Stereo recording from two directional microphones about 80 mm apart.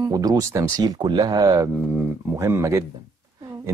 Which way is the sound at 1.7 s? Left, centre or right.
Right.